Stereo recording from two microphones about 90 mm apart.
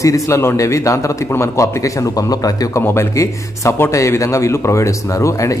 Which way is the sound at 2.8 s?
30° left (ahead or behind).